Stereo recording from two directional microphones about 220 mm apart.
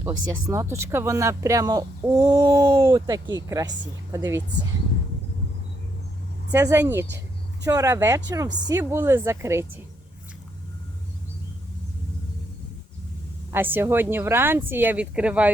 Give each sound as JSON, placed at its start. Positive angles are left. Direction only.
{"t": 0.0, "sound": "speech", "side_deg": -15}
{"t": 6.5, "sound": "speech", "side_deg": -10}
{"t": 13.5, "sound": "speech", "side_deg": -10}